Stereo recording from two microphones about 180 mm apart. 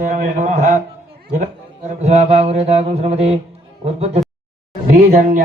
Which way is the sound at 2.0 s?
35° right (ahead or behind).